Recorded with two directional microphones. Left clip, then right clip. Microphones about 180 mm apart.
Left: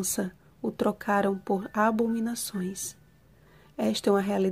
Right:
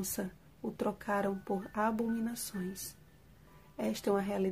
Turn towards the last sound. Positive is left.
turn(degrees=40)  # may be behind; listen again after turning